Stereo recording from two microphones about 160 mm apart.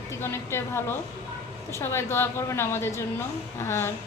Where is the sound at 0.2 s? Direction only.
15° left (ahead or behind).